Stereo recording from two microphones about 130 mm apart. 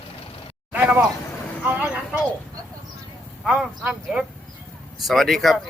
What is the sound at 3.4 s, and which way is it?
Speech, 5° right (ahead or behind).